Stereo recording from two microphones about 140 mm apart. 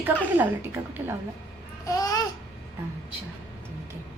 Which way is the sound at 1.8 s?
25° left (ahead or behind).